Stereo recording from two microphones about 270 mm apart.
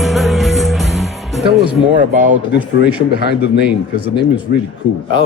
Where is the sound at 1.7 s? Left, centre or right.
Right.